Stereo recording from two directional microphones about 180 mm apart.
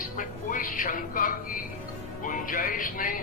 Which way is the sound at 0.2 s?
50° left (ahead or behind).